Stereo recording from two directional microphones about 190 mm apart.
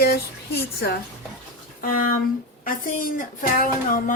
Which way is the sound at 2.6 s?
45° left (ahead or behind).